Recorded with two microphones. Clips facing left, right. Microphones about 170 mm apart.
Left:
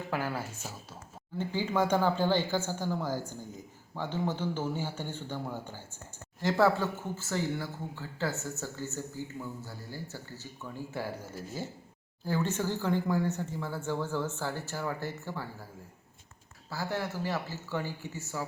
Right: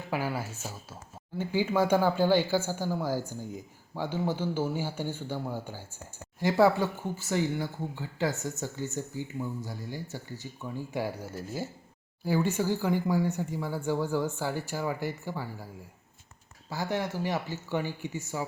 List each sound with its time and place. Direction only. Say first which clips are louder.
0.1 s speech: right 3 dB; 10° right (ahead or behind)
12.2 s speech: right 3 dB; 10° right (ahead or behind)
16.6 s speech: right 3 dB; 15° right (ahead or behind)